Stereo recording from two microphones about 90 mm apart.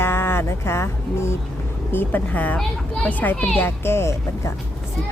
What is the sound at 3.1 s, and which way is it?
A woman's voice, 20° left (ahead or behind).